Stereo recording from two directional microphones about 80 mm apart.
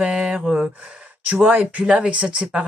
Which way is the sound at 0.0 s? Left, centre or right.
Centre.